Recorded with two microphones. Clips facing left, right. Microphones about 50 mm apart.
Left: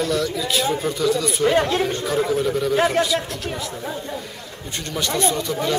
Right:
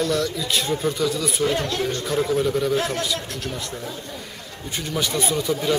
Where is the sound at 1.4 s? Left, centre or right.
Left.